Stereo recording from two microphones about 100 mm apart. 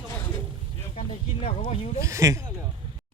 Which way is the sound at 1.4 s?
65° left (ahead or behind).